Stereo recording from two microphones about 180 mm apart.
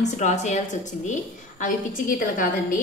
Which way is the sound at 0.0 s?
40° left (ahead or behind).